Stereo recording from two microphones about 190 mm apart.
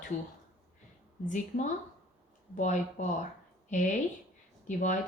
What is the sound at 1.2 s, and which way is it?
Speech, 40° left (ahead or behind).